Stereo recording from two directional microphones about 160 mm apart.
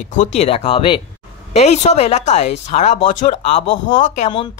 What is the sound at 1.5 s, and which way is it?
Speech, 45° left (ahead or behind).